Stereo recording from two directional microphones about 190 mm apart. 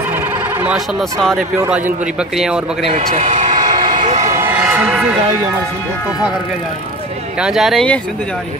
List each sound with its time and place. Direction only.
0.6 s speech: 10° right (ahead or behind)
2.9 s speech: 40° right (ahead or behind)
3.4 s train: 25° right (ahead or behind)
4.3 s a sound: 10° right (ahead or behind)
7.3 s speech: 5° right (ahead or behind)